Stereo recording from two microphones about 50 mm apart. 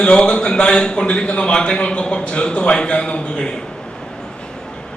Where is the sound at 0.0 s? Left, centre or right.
Centre.